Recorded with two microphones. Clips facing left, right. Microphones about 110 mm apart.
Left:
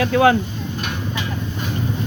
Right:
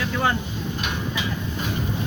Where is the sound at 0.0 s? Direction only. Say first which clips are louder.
Left 9 dB; 80° left.